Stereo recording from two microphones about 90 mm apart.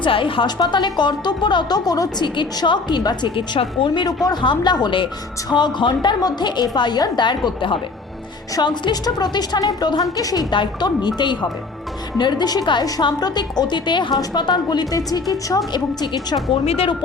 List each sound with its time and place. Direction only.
0.0 s a woman's voice: 75° left (ahead or behind)
0.4 s speech: 55° left (ahead or behind)
3.3 s a woman's voice: 75° left (ahead or behind); by 10.4 s 40° left (ahead or behind)
10.5 s a woman's voice: 55° left (ahead or behind)